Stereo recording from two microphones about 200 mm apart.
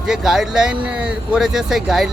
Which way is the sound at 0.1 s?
Centre (ahead or behind).